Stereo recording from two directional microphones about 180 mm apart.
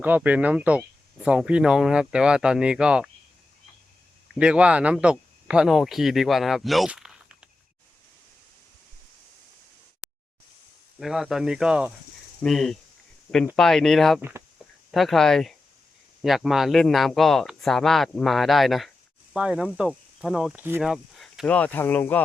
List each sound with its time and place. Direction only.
0.0 s speech: 10° right (ahead or behind)
4.4 s speech: 5° right (ahead or behind)
10.0 s a sound: 5° right (ahead or behind)
11.0 s speech: centre (ahead or behind)
14.2 s speech: 15° right (ahead or behind)
14.9 s speech: centre (ahead or behind)
21.4 s speech: 10° left (ahead or behind)